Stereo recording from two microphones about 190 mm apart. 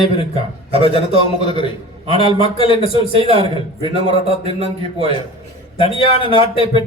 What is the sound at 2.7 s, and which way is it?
A man's voice, 30° right (ahead or behind).